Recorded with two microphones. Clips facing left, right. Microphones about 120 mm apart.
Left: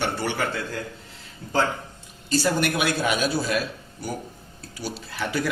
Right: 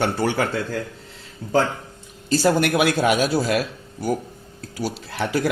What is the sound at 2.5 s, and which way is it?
Speech, 85° right.